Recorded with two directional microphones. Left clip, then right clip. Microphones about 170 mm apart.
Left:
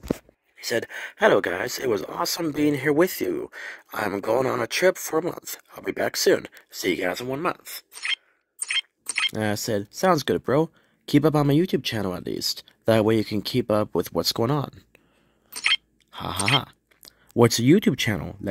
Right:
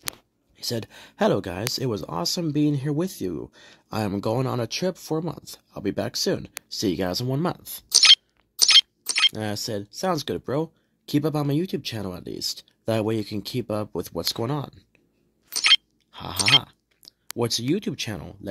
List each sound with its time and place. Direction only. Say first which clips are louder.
0.7 s speech: left 5 dB; 25° left (ahead or behind)
4.0 s speech: left 4 dB; 20° left (ahead or behind)
7.4 s speech: left 2 dB; 5° right (ahead or behind)
8.7 s squeak: right 6 dB; 5° right (ahead or behind)
9.3 s speech: left 4 dB; 20° left (ahead or behind)
15.5 s chewing: right 5 dB; 5° right (ahead or behind)
16.1 s speech: even; 15° left (ahead or behind)
16.5 s chewing: right 4 dB; 20° left (ahead or behind)
17.4 s speech: left 7 dB; 25° left (ahead or behind)